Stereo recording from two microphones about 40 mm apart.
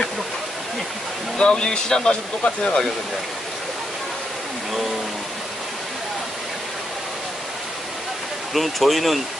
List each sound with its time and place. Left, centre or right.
1.4 s speech: left
8.5 s speech: centre